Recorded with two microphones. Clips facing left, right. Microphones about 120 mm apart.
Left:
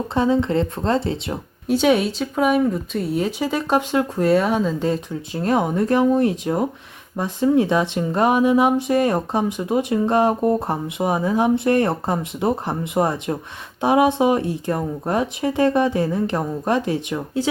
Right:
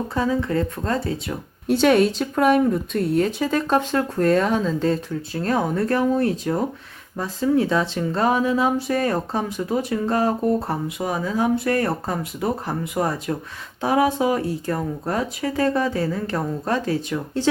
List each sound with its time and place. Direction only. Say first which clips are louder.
0.1 s speech: left 5 dB; 25° left (ahead or behind)
1.6 s speech: right 1 dB; centre (ahead or behind); by 17.2 s 20° left (ahead or behind)